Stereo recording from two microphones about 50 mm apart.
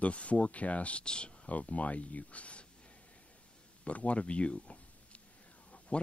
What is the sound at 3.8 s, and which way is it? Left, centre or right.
Speech, left.